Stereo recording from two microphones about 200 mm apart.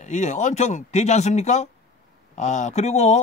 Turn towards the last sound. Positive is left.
turn(degrees=35)  # may be behind; listen again after turning